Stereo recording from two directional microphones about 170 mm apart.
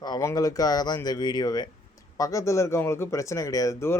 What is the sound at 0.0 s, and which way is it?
Speech, 20° left (ahead or behind).